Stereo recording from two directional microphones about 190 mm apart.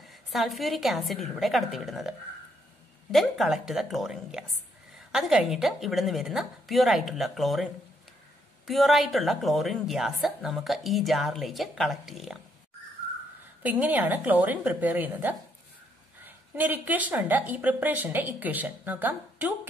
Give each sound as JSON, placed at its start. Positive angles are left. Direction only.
{"t": 0.1, "sound": "a woman's voice", "side_deg": 0}
{"t": 13.6, "sound": "a woman's voice", "side_deg": -10}